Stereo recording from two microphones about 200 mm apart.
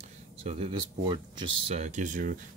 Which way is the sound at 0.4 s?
30° right (ahead or behind).